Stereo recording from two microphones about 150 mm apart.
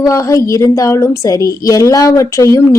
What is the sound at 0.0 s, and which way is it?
Speech, 20° left (ahead or behind).